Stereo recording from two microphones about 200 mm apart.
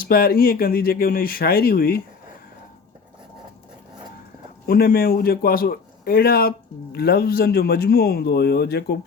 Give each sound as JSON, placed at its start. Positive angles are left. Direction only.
{"t": 0.0, "sound": "speech", "side_deg": 50}
{"t": 4.6, "sound": "speech", "side_deg": 45}